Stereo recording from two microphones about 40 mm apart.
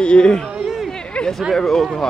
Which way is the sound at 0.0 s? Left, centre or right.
Left.